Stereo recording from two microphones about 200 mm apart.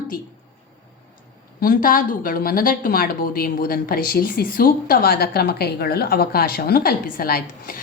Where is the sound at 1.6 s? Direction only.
45° left (ahead or behind).